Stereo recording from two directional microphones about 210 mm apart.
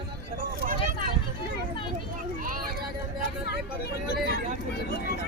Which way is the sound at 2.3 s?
40° right (ahead or behind).